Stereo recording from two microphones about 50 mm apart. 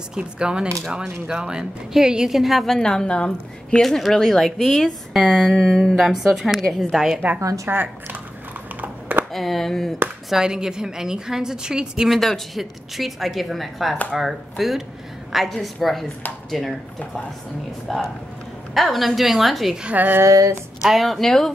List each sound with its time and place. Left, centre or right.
0.1 s a woman's voice: centre; by 3.8 s left
3.8 s a woman's voice: centre
5.5 s speech: centre
6.0 s a woman's voice: centre
7.3 s speech: right
7.7 s speech: right
9.3 s a woman's voice: centre
10.3 s a woman's voice: centre
12.1 s a woman's voice: centre
17.9 s a woman's voice: centre
19.9 s speech: right
20.2 s a sound: right
20.8 s a woman's voice: centre